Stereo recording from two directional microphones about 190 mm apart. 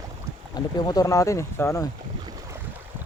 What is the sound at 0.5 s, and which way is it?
Speech, 20° left (ahead or behind).